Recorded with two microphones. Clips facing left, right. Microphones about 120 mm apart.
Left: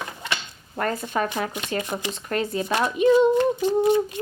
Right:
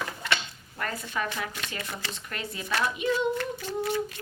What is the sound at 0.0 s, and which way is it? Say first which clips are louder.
Drawer open or close: even; 20° left (ahead or behind).